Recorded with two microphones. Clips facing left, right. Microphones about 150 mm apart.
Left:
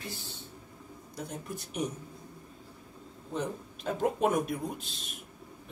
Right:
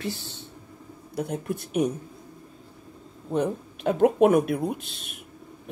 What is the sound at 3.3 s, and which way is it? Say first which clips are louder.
Speech: right 9 dB; 65° right (ahead or behind).